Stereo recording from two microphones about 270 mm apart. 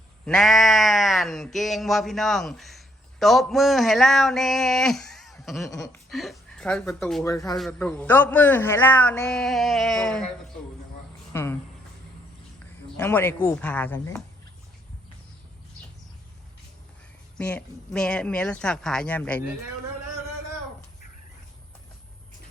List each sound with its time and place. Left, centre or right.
0.3 s a man's voice: centre
11.3 s speech: centre
13.0 s speech: centre
17.3 s a man's voice: centre